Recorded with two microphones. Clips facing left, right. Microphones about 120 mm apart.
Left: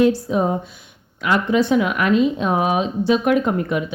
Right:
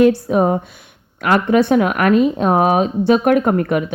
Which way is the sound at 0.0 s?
60° right (ahead or behind).